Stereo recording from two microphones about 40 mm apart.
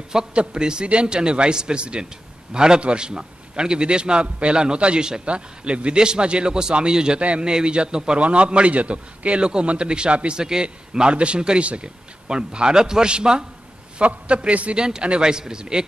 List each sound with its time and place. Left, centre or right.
0.3 s a man's voice: right
7.2 s a man's voice: right
14.8 s a man's voice: right